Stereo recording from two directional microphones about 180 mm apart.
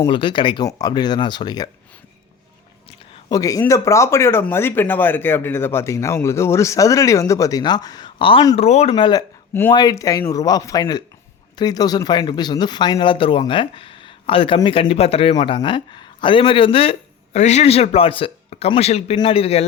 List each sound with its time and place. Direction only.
0.1 s speech: 25° left (ahead or behind)
3.2 s speech: 20° left (ahead or behind)
9.5 s speech: 10° left (ahead or behind); by 19.6 s 35° left (ahead or behind)